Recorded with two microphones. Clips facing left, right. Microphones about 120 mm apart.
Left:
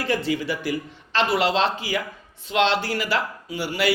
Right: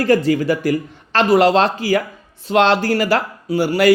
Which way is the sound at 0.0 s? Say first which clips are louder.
Right 9 dB; 45° right (ahead or behind).